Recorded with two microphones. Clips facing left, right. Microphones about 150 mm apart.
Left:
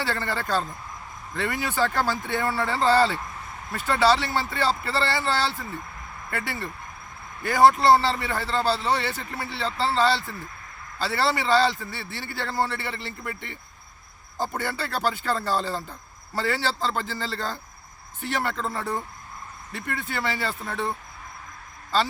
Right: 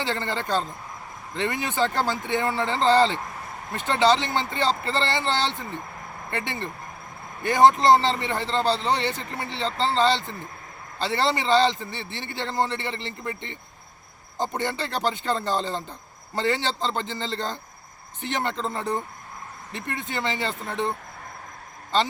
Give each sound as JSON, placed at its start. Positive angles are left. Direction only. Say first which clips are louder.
{"t": 0.0, "sound": "a man's voice", "louder": "right 1 dB", "side_deg": -20}